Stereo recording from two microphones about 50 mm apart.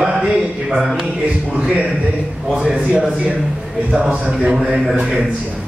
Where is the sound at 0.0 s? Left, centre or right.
Centre.